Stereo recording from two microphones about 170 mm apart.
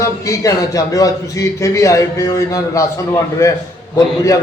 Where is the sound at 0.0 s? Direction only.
20° left (ahead or behind).